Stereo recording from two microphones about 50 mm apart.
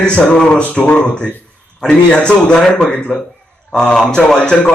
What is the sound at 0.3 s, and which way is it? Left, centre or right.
Speech, centre.